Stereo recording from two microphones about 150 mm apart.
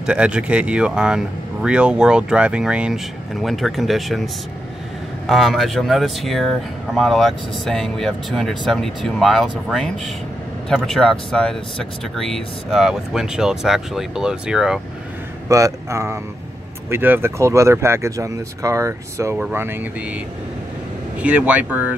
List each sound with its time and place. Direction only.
0.0 s speech: 5° right (ahead or behind)
15.4 s a man's voice: 20° right (ahead or behind)
21.2 s speech: 10° right (ahead or behind)